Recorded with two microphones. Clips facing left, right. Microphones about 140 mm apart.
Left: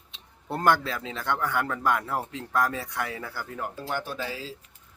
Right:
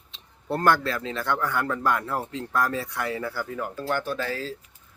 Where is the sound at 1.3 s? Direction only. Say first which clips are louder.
Right 1 dB; 15° left (ahead or behind).